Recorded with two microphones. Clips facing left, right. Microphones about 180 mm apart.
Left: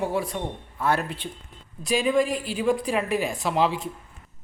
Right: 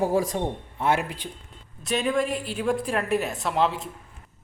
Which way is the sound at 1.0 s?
10° right (ahead or behind).